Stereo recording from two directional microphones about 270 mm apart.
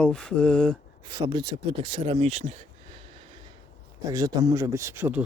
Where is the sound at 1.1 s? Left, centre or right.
Centre.